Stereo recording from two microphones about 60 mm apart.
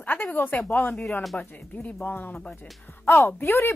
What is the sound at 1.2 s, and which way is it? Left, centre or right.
Speech, centre.